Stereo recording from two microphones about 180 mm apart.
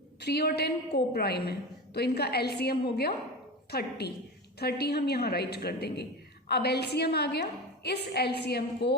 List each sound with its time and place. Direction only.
0.2 s a woman's voice: 65° left (ahead or behind)